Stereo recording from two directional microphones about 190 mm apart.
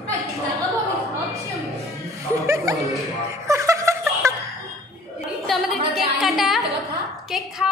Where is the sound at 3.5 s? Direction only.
15° right (ahead or behind).